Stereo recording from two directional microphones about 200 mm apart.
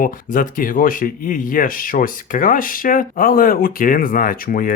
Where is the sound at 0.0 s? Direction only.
45° left (ahead or behind).